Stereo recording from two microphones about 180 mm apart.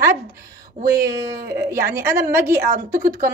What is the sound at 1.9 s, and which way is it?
Speech, 15° right (ahead or behind).